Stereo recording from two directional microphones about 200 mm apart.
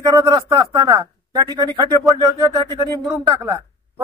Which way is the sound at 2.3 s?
20° right (ahead or behind).